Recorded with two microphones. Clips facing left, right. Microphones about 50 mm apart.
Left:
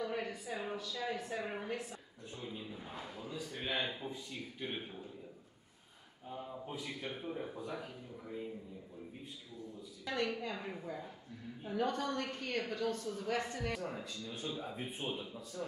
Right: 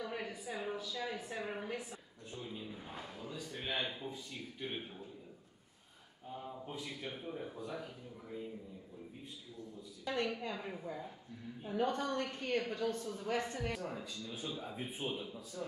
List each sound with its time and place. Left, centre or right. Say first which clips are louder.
0.0 s a sound: left 3 dB; centre
6.6 s a man's voice: left 1 dB; centre
10.2 s speech: left 1 dB; centre
11.7 s a woman's voice: right 1 dB; right
12.0 s speech: even; centre